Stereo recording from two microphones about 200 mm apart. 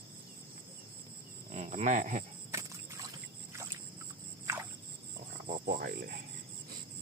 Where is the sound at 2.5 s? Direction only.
15° right (ahead or behind).